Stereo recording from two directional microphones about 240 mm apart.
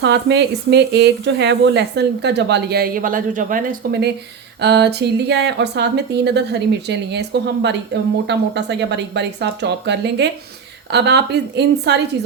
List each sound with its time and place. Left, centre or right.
0.0 s speech: right